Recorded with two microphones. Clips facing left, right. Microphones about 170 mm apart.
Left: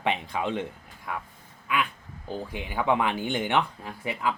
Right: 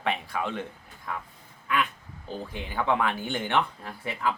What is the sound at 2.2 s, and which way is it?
Speech, 15° left (ahead or behind).